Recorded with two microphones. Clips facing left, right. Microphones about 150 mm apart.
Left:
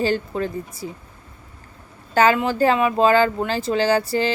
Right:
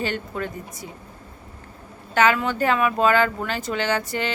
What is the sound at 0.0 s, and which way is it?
Speech, 30° left (ahead or behind).